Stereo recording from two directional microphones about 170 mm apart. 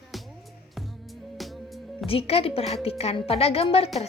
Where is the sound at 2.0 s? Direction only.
35° left (ahead or behind).